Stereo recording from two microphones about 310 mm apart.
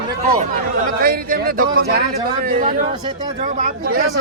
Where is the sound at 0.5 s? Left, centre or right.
Right.